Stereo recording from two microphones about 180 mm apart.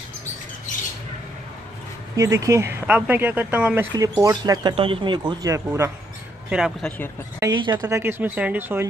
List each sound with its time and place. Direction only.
2.1 s speech: 15° right (ahead or behind)
3.9 s speech: 20° right (ahead or behind)
6.5 s speech: centre (ahead or behind)
7.4 s speech: 15° right (ahead or behind)